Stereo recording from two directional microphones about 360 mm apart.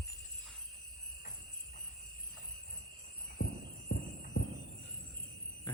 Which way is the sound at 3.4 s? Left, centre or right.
Left.